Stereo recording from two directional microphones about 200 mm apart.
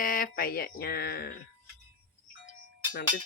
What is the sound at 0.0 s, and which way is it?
Speech, 45° left (ahead or behind).